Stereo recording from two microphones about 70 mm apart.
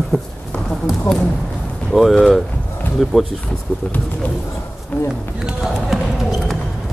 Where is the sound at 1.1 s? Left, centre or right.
Left.